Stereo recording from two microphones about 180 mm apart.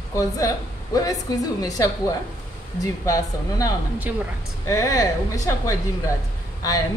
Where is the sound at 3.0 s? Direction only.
20° left (ahead or behind).